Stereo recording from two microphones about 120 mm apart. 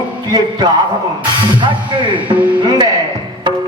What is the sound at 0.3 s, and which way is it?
Speech, 40° right (ahead or behind).